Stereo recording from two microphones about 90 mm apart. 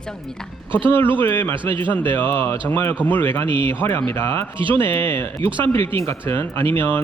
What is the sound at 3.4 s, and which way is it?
Speech, 65° right (ahead or behind).